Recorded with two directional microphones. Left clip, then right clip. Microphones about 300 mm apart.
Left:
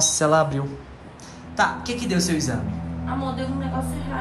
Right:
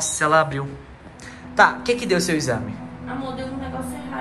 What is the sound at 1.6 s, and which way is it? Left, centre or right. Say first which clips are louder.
Speech: right 6 dB; centre.